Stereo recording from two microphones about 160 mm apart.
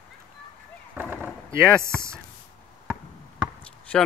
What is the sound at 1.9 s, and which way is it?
Speech, 15° right (ahead or behind).